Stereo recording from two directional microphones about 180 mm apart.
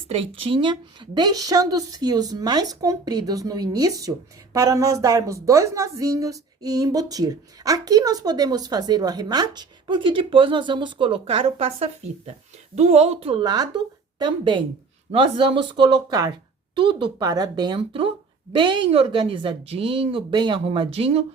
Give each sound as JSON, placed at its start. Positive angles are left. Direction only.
{"t": 0.1, "sound": "a woman's voice", "side_deg": -30}